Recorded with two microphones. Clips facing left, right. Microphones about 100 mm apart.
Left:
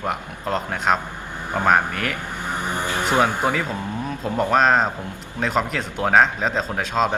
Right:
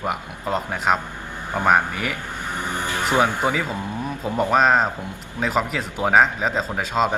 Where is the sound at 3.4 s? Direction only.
5° right (ahead or behind).